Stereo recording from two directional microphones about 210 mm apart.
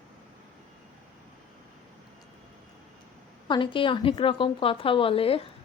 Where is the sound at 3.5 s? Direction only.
25° left (ahead or behind).